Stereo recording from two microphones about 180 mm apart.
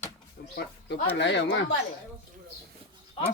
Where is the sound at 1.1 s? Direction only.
75° left (ahead or behind).